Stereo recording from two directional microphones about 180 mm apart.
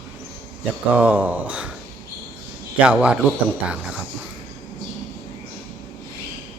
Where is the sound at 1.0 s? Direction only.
10° right (ahead or behind).